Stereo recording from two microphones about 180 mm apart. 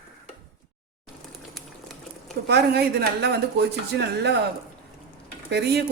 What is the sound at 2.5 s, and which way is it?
Speech, 70° right (ahead or behind).